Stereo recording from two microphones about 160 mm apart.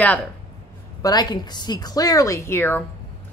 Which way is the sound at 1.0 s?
25° left (ahead or behind).